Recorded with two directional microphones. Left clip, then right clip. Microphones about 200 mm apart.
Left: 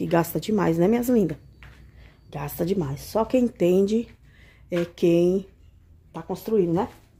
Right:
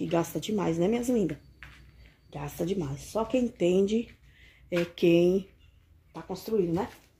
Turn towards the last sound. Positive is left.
turn(degrees=20)  # may be behind; listen again after turning